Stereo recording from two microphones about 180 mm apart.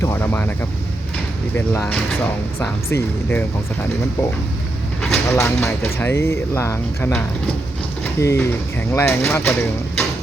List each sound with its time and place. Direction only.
0.0 s speech: 15° left (ahead or behind)
1.5 s speech: 10° left (ahead or behind)
5.4 s speech: 10° left (ahead or behind)